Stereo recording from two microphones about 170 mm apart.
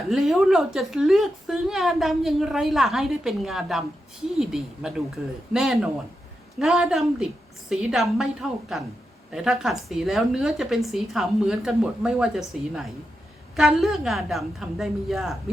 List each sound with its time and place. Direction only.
0.1 s speech: centre (ahead or behind)